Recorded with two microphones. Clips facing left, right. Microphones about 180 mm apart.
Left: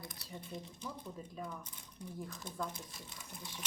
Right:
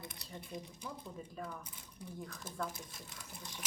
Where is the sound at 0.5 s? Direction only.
15° right (ahead or behind).